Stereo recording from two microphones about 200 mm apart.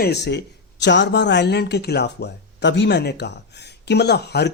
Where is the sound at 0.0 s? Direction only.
55° left (ahead or behind).